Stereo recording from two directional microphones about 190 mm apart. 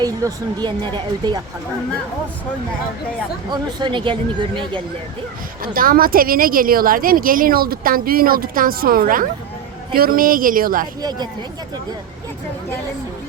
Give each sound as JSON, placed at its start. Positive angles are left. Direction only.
{"t": 0.0, "sound": "speech", "side_deg": -20}
{"t": 3.5, "sound": "speech", "side_deg": -25}
{"t": 5.6, "sound": "a woman's voice", "side_deg": -50}